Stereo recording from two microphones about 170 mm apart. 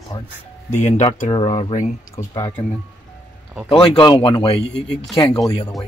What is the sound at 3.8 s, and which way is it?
Speech, 30° left (ahead or behind).